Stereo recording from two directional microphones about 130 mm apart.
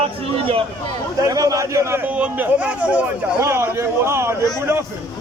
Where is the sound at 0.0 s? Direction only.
45° right (ahead or behind).